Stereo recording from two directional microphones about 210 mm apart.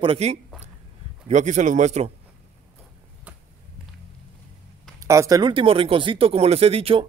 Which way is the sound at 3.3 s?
10° right (ahead or behind).